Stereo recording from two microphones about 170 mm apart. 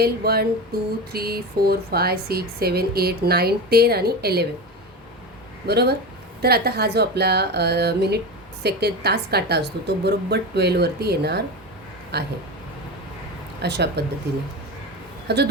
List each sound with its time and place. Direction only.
0.0 s a sound: 65° right (ahead or behind)
1.1 s speech: 65° right (ahead or behind)
5.6 s speech: 70° right (ahead or behind)
13.6 s speech: 80° right
15.3 s speech: 75° right (ahead or behind)